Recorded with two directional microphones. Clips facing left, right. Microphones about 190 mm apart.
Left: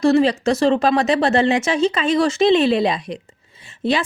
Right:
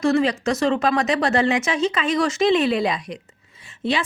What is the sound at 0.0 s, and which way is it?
A woman's voice, 30° left (ahead or behind).